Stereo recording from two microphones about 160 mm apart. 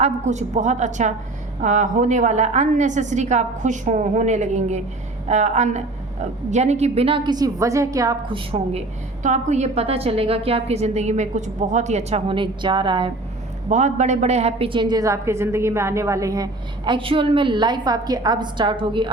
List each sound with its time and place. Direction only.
0.0 s a woman's voice: 50° right (ahead or behind); by 8.1 s 20° right (ahead or behind)
8.3 s a woman's voice: 35° right (ahead or behind)
9.2 s a woman's voice: 45° right (ahead or behind); by 13.1 s 30° right (ahead or behind)
13.7 s a woman's voice: 50° right (ahead or behind); by 19.1 s 30° right (ahead or behind)